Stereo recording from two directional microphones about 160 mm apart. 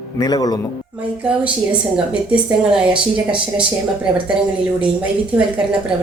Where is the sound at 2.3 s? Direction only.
5° right (ahead or behind).